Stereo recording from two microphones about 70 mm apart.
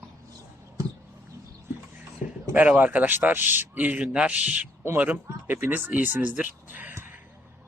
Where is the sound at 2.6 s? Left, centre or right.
Right.